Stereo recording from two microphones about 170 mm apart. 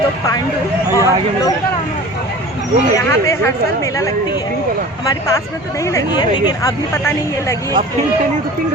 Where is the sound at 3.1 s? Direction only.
15° left (ahead or behind).